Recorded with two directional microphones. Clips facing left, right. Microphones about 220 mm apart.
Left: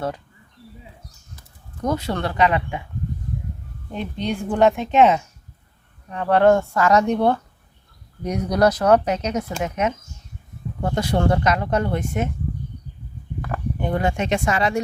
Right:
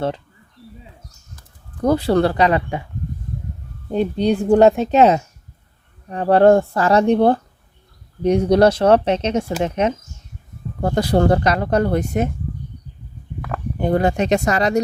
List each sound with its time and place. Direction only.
1.8 s speech: 35° right (ahead or behind)
3.9 s speech: 35° right (ahead or behind)
13.7 s speech: 35° right (ahead or behind)